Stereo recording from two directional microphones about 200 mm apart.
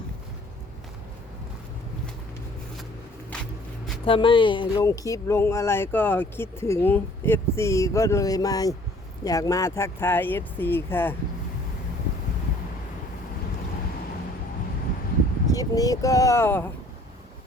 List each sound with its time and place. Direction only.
3.3 s a sound: 5° left (ahead or behind)
4.0 s speech: 25° left (ahead or behind)
15.4 s speech: 15° left (ahead or behind)